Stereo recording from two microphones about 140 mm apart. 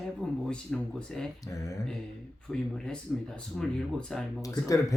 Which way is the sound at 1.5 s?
25° left (ahead or behind).